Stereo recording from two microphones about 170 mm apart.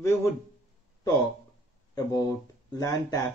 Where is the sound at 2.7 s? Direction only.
20° left (ahead or behind).